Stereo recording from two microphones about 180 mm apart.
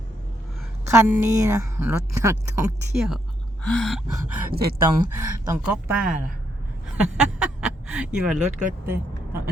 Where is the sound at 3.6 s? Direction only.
Centre (ahead or behind).